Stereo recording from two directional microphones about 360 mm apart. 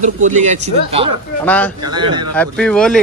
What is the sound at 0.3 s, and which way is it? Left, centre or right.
Speech, centre.